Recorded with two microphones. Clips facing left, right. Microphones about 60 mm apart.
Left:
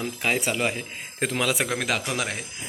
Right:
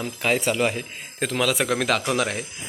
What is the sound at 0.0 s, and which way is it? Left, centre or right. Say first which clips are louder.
Speech: right 2 dB; centre.